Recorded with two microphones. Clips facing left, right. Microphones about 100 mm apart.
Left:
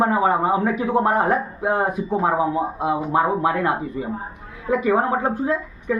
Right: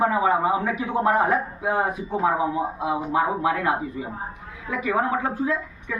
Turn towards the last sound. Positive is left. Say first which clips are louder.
# left 4 dB
turn(degrees=45)  # may be behind; listen again after turning